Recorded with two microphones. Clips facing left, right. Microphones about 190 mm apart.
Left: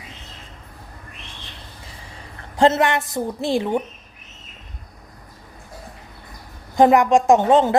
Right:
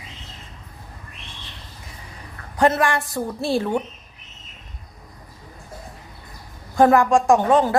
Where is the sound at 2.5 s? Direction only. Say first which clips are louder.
Left 2 dB; 25° left (ahead or behind).